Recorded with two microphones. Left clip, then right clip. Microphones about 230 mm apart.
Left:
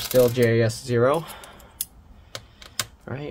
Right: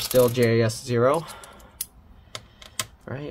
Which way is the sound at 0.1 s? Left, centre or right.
Centre.